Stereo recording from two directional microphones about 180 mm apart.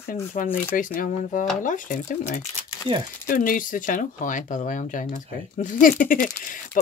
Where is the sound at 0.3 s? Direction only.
50° left (ahead or behind).